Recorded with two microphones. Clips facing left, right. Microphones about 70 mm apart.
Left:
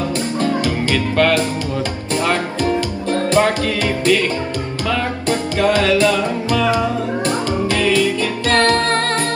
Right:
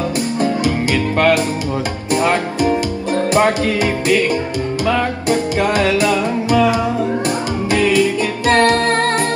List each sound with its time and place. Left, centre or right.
0.4 s music: right